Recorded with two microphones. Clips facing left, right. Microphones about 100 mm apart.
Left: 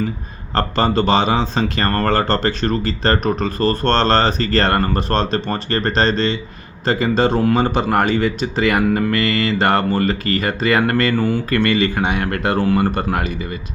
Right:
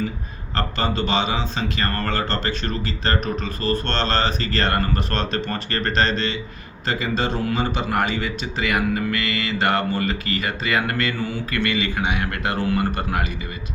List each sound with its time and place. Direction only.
0.5 s speech: 40° left (ahead or behind)